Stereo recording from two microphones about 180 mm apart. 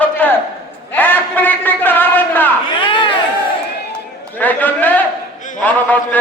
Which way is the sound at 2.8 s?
25° left (ahead or behind).